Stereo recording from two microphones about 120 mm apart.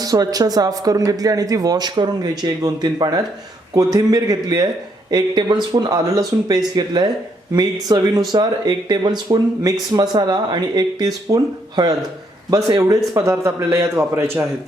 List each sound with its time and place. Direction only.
0.0 s a man's voice: 30° right (ahead or behind)
12.5 s a man's voice: 30° right (ahead or behind)